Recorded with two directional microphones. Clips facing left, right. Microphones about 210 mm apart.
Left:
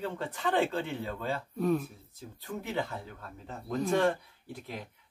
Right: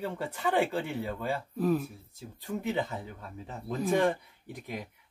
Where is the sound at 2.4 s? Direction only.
15° right (ahead or behind).